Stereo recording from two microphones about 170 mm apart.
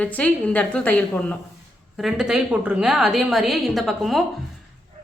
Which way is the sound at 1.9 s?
Centre (ahead or behind).